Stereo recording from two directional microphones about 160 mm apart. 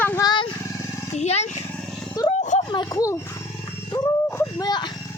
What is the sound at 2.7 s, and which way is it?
Speech, 25° left (ahead or behind).